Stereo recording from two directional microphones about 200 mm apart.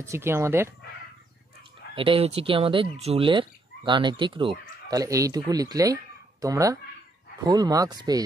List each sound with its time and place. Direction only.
0.0 s speech: 15° right (ahead or behind)
2.0 s speech: 25° right (ahead or behind)